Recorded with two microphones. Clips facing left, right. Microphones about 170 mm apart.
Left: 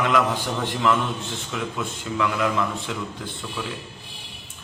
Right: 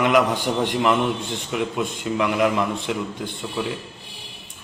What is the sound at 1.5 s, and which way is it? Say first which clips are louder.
A man's voice: right 5 dB; 20° right (ahead or behind).